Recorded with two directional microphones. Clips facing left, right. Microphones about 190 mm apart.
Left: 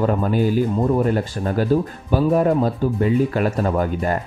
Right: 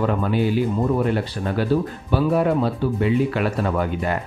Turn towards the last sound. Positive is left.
turn(degrees=40)  # may be behind; listen again after turning